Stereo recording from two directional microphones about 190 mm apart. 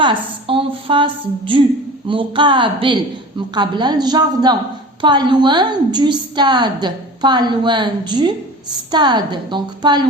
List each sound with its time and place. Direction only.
0.0 s a woman's voice: 25° right (ahead or behind)